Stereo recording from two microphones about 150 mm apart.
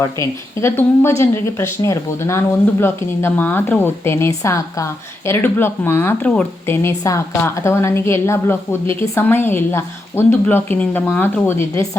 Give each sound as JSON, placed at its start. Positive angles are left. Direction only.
{"t": 0.0, "sound": "a woman's voice", "side_deg": 15}